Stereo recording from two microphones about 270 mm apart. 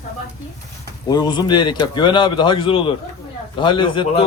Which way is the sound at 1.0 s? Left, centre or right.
Centre.